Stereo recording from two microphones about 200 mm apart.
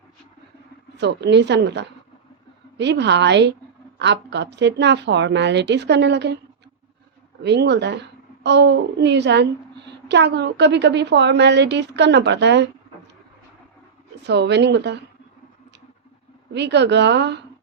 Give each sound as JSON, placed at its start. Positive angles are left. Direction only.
{"t": 0.9, "sound": "a woman's voice", "side_deg": -60}
{"t": 7.4, "sound": "a woman's voice", "side_deg": -55}
{"t": 14.2, "sound": "a woman's voice", "side_deg": -60}
{"t": 16.5, "sound": "a woman's voice", "side_deg": -60}